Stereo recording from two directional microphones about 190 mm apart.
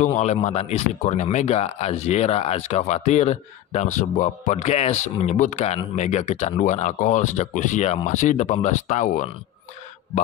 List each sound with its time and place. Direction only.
0.0 s speech: 40° left (ahead or behind)